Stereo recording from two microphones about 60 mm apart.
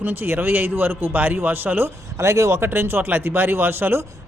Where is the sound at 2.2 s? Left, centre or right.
Right.